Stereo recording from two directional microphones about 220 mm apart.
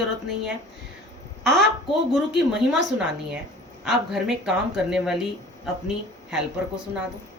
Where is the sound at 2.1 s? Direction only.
Centre (ahead or behind).